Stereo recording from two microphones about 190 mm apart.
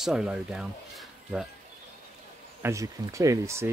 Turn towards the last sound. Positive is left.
turn(degrees=-15)  # may be behind; listen again after turning